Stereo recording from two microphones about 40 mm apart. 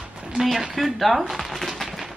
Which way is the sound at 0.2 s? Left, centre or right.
Centre.